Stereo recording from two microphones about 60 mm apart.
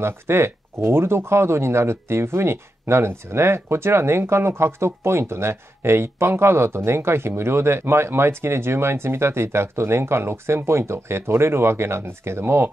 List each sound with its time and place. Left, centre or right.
0.0 s speech: right